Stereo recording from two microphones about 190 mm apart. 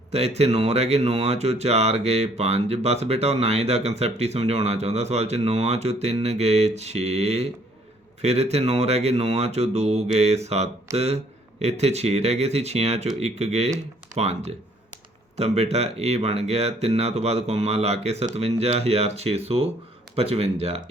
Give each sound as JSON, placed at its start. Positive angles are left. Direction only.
{"t": 0.1, "sound": "speech", "side_deg": -35}